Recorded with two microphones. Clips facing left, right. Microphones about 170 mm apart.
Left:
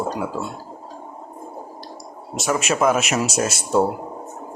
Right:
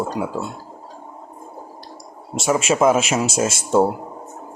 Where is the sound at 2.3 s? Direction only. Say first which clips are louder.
Right 3 dB; 25° right (ahead or behind).